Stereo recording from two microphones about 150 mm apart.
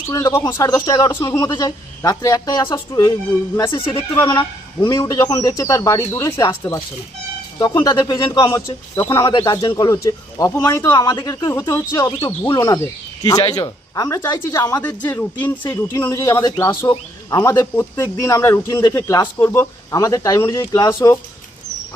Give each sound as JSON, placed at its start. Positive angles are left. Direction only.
{"t": 0.1, "sound": "speech", "side_deg": 20}
{"t": 3.9, "sound": "speech", "side_deg": 20}
{"t": 8.0, "sound": "speech", "side_deg": 30}
{"t": 8.4, "sound": "a man's voice", "side_deg": 20}
{"t": 12.5, "sound": "speech", "side_deg": 35}
{"t": 13.9, "sound": "speech", "side_deg": 20}